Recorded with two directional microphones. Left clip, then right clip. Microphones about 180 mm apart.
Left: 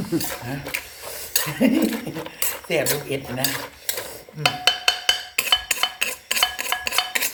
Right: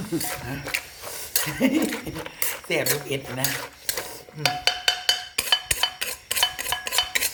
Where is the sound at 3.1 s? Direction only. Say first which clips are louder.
Left 2 dB; 25° right (ahead or behind).